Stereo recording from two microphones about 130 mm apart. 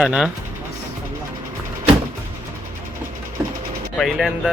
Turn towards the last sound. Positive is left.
turn(degrees=0)  # may be behind; listen again after turning